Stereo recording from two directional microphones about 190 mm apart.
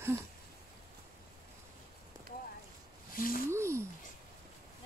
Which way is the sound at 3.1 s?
50° left (ahead or behind).